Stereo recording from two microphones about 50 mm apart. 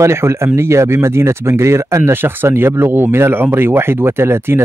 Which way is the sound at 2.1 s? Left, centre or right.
Right.